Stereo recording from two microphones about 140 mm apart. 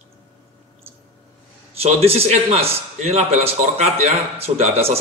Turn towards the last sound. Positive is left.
turn(degrees=-45)  # may be behind; listen again after turning